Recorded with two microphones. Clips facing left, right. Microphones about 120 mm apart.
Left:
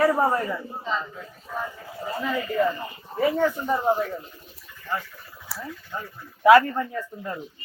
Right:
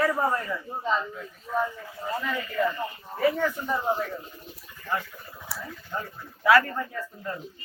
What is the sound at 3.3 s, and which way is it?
Speech, 15° left (ahead or behind).